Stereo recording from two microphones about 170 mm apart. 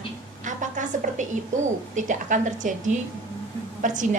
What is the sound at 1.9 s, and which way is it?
A woman's voice, 50° right (ahead or behind).